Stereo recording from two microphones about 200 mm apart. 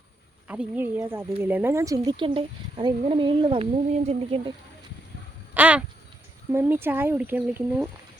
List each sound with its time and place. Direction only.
0.4 s speech: 5° right (ahead or behind); by 4.5 s 30° right (ahead or behind)
5.5 s a sound: 5° right (ahead or behind)
6.5 s speech: 10° right (ahead or behind)